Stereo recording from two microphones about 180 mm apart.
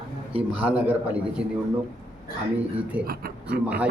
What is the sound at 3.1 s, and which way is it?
Speech, 55° right (ahead or behind).